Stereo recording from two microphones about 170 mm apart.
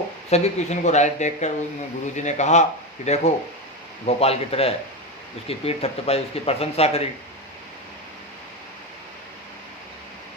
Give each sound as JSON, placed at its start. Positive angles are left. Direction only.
{"t": 0.3, "sound": "speech", "side_deg": 40}